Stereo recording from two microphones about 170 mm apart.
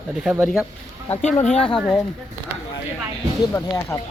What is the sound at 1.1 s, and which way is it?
Speech, 45° left (ahead or behind).